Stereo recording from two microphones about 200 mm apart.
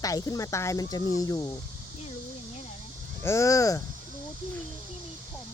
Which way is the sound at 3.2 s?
15° left (ahead or behind).